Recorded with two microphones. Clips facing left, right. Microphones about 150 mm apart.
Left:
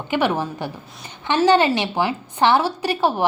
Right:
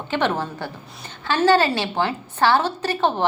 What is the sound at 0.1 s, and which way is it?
A woman's voice, 10° left (ahead or behind).